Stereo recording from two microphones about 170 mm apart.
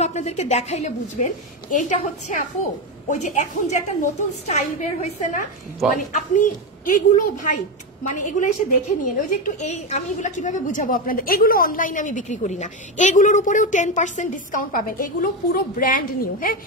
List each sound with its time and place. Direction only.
0.0 s a woman's voice: 40° left (ahead or behind)